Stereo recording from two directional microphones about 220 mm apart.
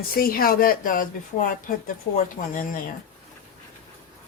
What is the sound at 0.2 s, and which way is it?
Speech, 40° left (ahead or behind).